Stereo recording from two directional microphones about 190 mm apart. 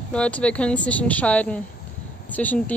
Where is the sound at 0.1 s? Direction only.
5° left (ahead or behind).